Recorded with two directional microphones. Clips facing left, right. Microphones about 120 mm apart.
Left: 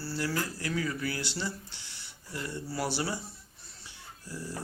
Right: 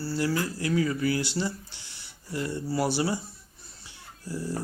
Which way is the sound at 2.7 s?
15° right (ahead or behind).